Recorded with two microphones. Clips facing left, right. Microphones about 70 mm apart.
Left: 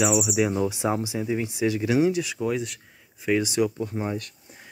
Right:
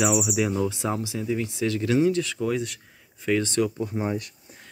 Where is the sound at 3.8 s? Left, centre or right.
Centre.